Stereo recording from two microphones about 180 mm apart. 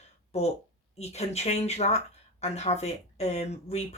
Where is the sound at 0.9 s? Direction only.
35° left (ahead or behind).